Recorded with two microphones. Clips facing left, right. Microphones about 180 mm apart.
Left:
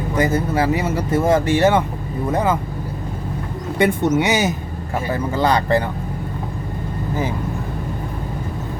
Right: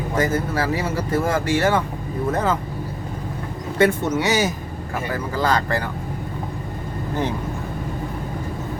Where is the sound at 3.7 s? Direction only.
15° left (ahead or behind).